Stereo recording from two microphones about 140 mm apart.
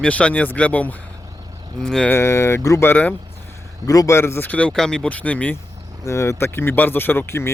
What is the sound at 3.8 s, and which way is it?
Speech, 25° left (ahead or behind).